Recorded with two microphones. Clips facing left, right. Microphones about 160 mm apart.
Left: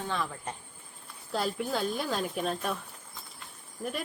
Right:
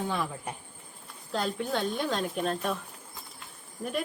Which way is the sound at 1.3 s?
5° left (ahead or behind).